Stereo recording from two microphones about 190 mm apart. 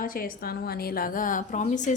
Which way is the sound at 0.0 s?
50° left (ahead or behind).